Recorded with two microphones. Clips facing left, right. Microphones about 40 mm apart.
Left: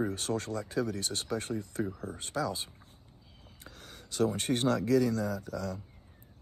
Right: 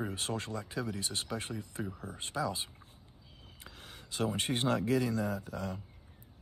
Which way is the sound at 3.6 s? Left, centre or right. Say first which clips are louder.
Left 1 dB; right.